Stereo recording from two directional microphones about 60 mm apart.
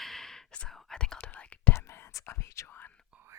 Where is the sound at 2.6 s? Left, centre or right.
Left.